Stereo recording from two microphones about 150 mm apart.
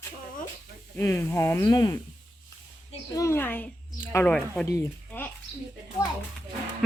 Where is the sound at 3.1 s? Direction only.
20° left (ahead or behind).